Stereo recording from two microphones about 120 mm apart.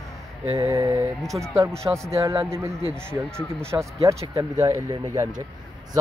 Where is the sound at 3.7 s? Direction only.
25° right (ahead or behind).